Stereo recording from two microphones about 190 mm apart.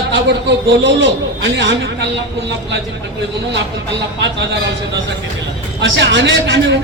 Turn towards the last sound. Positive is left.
turn(degrees=-75)  # may be behind; listen again after turning